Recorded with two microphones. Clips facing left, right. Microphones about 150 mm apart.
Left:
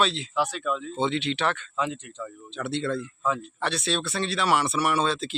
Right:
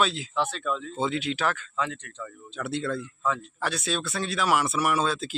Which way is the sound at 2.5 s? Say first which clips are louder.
Left 1 dB; 5° right (ahead or behind).